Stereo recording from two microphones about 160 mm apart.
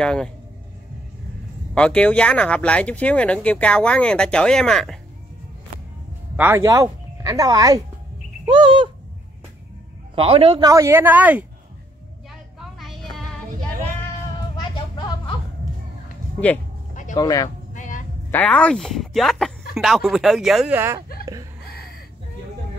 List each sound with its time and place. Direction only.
0.0 s speech: 5° left (ahead or behind)
1.8 s speech: 5° left (ahead or behind)
6.3 s speech: 15° right (ahead or behind)
8.5 s bird: 30° right (ahead or behind)
10.1 s a man's voice: 35° right (ahead or behind)
10.7 s speech: 15° right (ahead or behind)
12.5 s vehicle: centre (ahead or behind)
14.6 s vehicle: 30° left (ahead or behind)
16.9 s a sound: 50° left (ahead or behind)
17.2 s speech: 25° left (ahead or behind)
17.7 s music: 55° left (ahead or behind)
18.3 s speech: 10° left (ahead or behind)
20.7 s speech: 15° right (ahead or behind)